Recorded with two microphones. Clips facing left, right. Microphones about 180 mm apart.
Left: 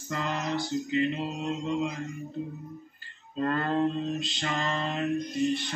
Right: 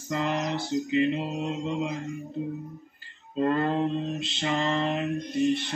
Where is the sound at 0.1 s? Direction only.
20° right (ahead or behind).